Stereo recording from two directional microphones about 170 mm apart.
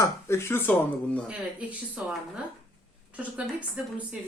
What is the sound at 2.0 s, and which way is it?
Speech, 10° right (ahead or behind).